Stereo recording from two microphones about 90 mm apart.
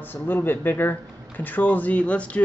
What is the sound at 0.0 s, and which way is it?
Speech, 20° left (ahead or behind).